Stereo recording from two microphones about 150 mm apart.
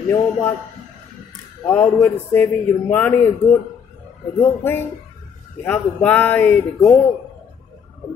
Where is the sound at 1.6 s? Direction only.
15° left (ahead or behind).